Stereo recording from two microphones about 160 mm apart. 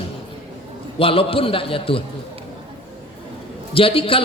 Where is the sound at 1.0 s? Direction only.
35° left (ahead or behind).